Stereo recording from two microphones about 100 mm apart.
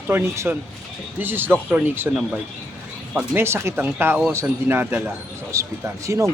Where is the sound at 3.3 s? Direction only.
25° right (ahead or behind).